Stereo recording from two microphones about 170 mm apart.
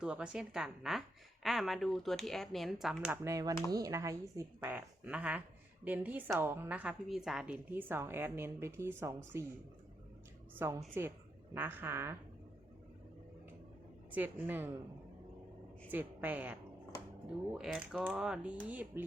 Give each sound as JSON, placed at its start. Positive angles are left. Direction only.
{"t": 0.0, "sound": "a woman's voice", "side_deg": -5}
{"t": 3.2, "sound": "a woman's voice", "side_deg": -20}
{"t": 10.6, "sound": "a woman's voice", "side_deg": -15}
{"t": 14.1, "sound": "a woman's voice", "side_deg": -10}
{"t": 15.9, "sound": "a woman's voice", "side_deg": -10}